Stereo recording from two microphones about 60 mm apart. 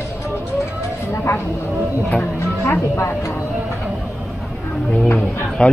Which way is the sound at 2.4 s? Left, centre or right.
Left.